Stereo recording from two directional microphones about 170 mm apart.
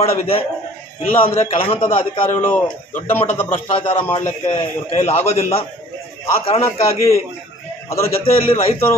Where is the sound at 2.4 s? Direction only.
10° left (ahead or behind).